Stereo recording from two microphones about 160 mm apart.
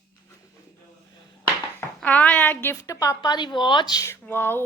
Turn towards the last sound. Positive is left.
turn(degrees=15)  # may be behind; listen again after turning